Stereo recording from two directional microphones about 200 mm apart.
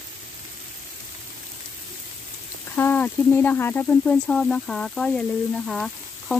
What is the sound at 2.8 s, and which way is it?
Speech, 10° left (ahead or behind).